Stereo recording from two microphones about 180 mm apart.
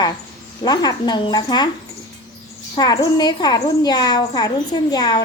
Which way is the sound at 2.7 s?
20° left (ahead or behind).